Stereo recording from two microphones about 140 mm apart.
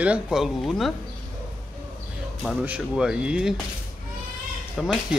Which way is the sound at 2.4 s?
5° right (ahead or behind).